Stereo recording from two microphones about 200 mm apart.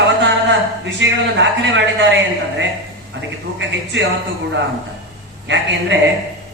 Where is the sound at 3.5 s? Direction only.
60° right (ahead or behind).